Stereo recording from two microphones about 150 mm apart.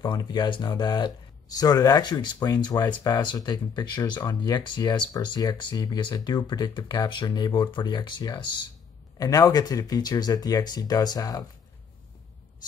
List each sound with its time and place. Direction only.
0.0 s speech: 30° left (ahead or behind)